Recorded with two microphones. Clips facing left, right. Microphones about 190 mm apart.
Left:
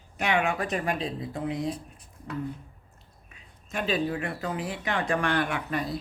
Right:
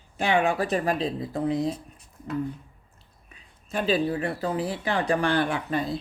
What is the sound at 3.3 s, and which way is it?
Speech, 35° right (ahead or behind).